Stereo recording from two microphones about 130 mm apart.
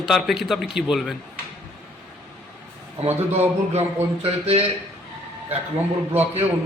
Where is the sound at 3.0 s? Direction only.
55° right (ahead or behind).